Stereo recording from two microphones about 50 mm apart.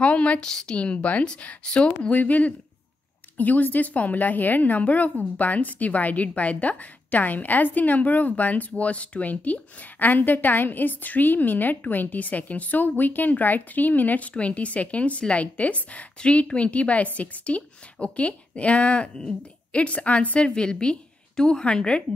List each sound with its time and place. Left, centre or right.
0.0 s a sound: left
0.4 s a woman's voice: centre
0.7 s speech: left
2.1 s a woman's voice: left